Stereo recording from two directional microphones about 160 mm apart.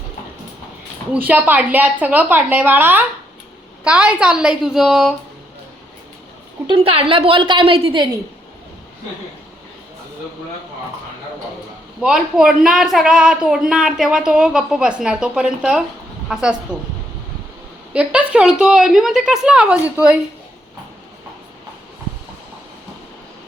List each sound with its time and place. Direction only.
1.3 s a woman's voice: 10° right (ahead or behind)
6.7 s a woman's voice: 35° right (ahead or behind)
12.0 s speech: 5° right (ahead or behind)
17.9 s speech: 10° right (ahead or behind)